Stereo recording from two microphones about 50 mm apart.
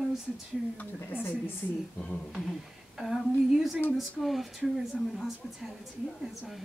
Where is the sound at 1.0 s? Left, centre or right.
Left.